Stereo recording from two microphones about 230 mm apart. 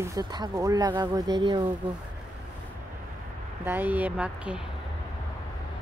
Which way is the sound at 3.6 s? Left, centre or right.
Centre.